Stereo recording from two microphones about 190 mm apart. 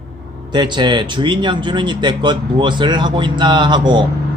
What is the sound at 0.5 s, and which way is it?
A man's voice, 25° right (ahead or behind).